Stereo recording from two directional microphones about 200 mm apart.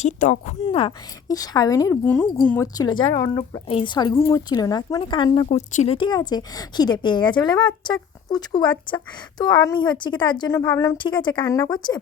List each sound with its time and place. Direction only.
0.0 s a woman's voice: 35° left (ahead or behind)
5.5 s a woman's voice: 35° left (ahead or behind); by 10.9 s 15° left (ahead or behind)
10.9 s a woman's voice: 25° left (ahead or behind)